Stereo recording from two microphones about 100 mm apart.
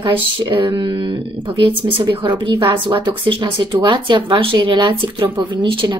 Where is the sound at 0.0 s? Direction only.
55° right (ahead or behind).